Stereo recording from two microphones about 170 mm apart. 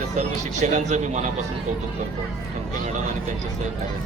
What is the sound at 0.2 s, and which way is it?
A man's voice, 40° right (ahead or behind).